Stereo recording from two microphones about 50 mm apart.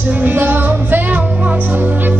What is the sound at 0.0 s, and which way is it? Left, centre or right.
Music, right.